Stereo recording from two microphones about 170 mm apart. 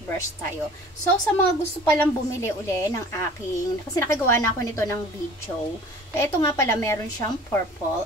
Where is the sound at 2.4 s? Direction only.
15° left (ahead or behind).